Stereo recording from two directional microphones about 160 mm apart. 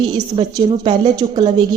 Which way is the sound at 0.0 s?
25° right (ahead or behind).